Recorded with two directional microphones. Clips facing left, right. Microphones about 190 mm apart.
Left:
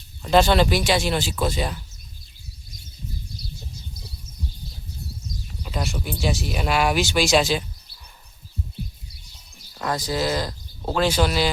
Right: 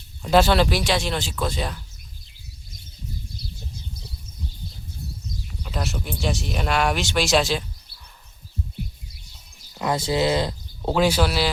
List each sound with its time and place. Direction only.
0.2 s speech: 5° right (ahead or behind)
5.6 s speech: centre (ahead or behind)
9.7 s speech: 20° right (ahead or behind)
10.9 s speech: 10° right (ahead or behind)